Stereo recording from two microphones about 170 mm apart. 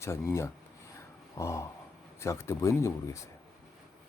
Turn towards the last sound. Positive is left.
turn(degrees=15)  # may be behind; listen again after turning